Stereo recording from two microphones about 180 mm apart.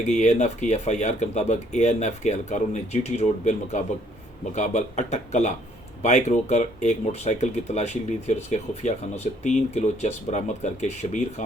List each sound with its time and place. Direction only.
0.0 s speech: 40° left (ahead or behind)